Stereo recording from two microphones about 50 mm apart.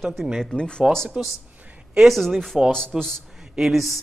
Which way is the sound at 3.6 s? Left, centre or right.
Centre.